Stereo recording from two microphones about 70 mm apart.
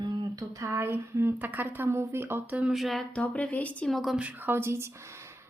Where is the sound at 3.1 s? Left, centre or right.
Left.